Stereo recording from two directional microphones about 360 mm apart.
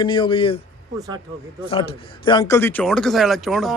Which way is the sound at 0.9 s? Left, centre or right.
Centre.